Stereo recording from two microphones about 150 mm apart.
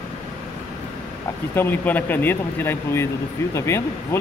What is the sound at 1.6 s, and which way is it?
Speech, 10° left (ahead or behind).